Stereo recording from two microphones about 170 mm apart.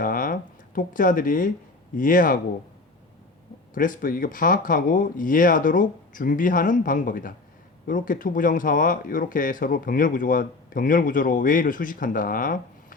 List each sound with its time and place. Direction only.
0.0 s a sound: 55° left (ahead or behind)
2.0 s speech: 55° left (ahead or behind)
3.8 s speech: 55° left (ahead or behind)